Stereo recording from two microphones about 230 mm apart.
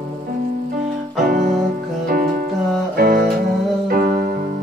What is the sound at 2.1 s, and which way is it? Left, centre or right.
Music, right.